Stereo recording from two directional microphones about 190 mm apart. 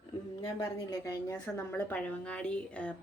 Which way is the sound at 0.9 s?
15° left (ahead or behind).